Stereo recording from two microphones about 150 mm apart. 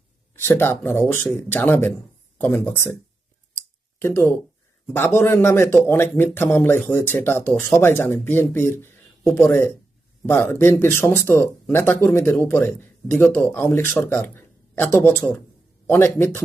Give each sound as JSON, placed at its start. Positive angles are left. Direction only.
{"t": 0.3, "sound": "speech", "side_deg": 15}
{"t": 4.0, "sound": "speech", "side_deg": 15}